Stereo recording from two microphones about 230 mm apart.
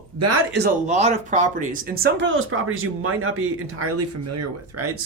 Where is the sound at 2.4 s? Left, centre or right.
Right.